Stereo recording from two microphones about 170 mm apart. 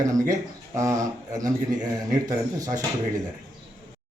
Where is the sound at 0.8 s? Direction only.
20° right (ahead or behind).